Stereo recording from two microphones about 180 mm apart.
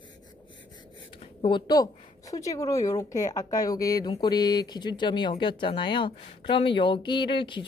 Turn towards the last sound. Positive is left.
turn(degrees=25)  # may be behind; listen again after turning